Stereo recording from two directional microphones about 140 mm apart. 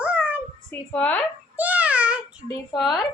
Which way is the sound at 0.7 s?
10° left (ahead or behind).